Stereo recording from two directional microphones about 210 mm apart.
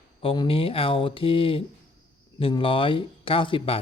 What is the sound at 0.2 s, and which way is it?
Speech, 25° left (ahead or behind).